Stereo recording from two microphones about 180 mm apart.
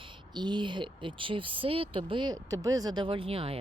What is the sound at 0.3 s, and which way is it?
Speech, 25° right (ahead or behind).